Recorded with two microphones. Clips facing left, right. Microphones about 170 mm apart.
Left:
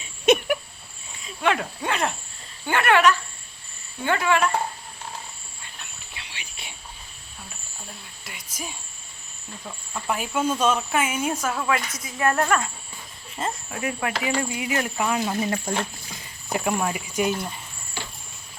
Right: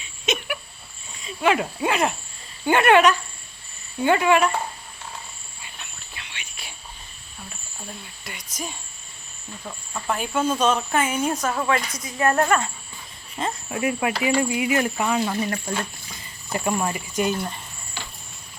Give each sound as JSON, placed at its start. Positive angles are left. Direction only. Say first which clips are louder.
{"t": 0.3, "sound": "a sound", "louder": "left 9 dB", "side_deg": 60}
{"t": 1.2, "sound": "speech", "louder": "right 3 dB", "side_deg": -5}
{"t": 2.6, "sound": "speech", "louder": "right 3 dB", "side_deg": -20}
{"t": 6.1, "sound": "cricket", "louder": "even", "side_deg": 30}
{"t": 8.2, "sound": "speech", "louder": "right 2 dB", "side_deg": 5}
{"t": 10.1, "sound": "speech", "louder": "right 1 dB", "side_deg": 10}
{"t": 13.4, "sound": "speech", "louder": "right 1 dB", "side_deg": 5}
{"t": 13.8, "sound": "speech", "louder": "right 4 dB", "side_deg": -10}
{"t": 14.9, "sound": "speech", "louder": "right 1 dB", "side_deg": 0}
{"t": 15.4, "sound": "speech", "louder": "left 1 dB", "side_deg": 20}
{"t": 16.5, "sound": "speech", "louder": "even", "side_deg": 5}